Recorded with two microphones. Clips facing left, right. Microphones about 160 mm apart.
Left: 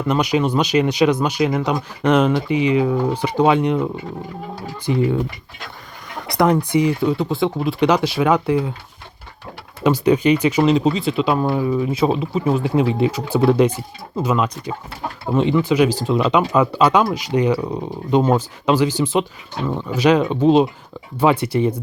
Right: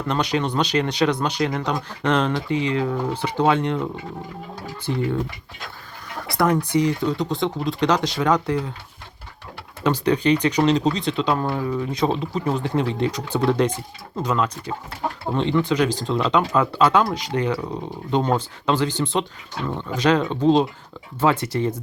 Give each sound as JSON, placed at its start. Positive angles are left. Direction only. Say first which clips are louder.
{"t": 0.1, "sound": "speech", "louder": "left 5 dB", "side_deg": 10}
{"t": 4.9, "sound": "speech", "louder": "left 5 dB", "side_deg": 15}
{"t": 6.2, "sound": "speech", "louder": "left 4 dB", "side_deg": 15}
{"t": 9.8, "sound": "speech", "louder": "left 4 dB", "side_deg": 10}